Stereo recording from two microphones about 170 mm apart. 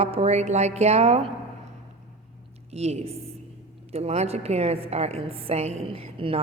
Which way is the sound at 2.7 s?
40° right (ahead or behind).